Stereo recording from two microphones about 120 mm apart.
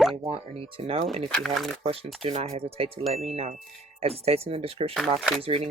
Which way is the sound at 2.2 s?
55° right (ahead or behind).